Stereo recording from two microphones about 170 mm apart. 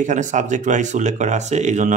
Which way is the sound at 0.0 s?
45° right (ahead or behind).